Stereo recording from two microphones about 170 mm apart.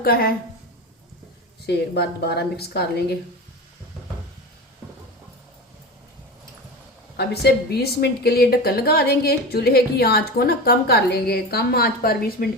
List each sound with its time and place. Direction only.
0.0 s a woman's voice: 60° left (ahead or behind)
1.6 s a woman's voice: 75° left (ahead or behind)
7.2 s a woman's voice: 70° left (ahead or behind)